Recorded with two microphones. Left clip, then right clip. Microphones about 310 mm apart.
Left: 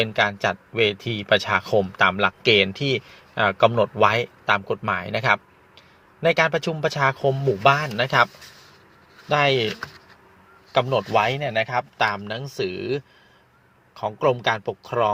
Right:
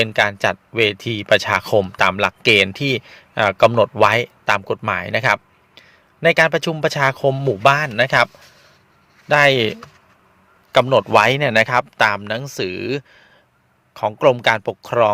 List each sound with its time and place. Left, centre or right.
0.0 s speech: right
9.3 s speech: right